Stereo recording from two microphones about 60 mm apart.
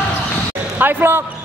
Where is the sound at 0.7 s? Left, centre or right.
Right.